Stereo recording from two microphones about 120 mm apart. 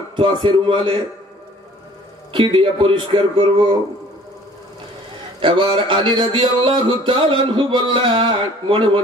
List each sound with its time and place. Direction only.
0.1 s speech: 45° right (ahead or behind)
2.3 s speech: 45° right (ahead or behind)
5.4 s speech: 40° right (ahead or behind)